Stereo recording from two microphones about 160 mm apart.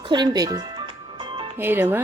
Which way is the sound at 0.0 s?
30° right (ahead or behind).